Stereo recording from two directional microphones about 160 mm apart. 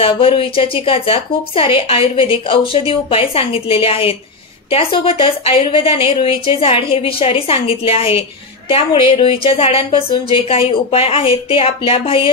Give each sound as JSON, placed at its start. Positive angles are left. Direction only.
{"t": 0.0, "sound": "a woman's voice", "side_deg": 35}